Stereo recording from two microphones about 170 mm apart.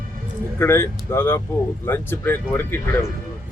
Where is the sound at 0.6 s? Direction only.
15° left (ahead or behind).